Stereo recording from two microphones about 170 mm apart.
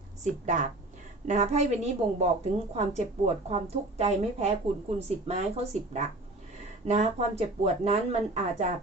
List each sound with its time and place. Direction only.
0.2 s a woman's voice: 45° right (ahead or behind)